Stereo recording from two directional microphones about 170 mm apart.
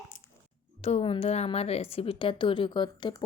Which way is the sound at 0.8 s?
35° left (ahead or behind).